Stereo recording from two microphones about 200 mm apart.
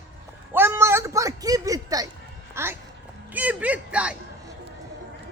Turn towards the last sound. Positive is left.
turn(degrees=-5)  # may be behind; listen again after turning